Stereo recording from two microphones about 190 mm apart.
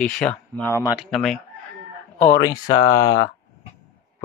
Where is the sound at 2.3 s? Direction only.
20° left (ahead or behind).